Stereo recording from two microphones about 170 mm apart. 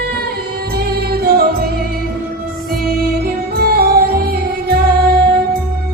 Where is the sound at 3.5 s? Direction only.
65° right (ahead or behind).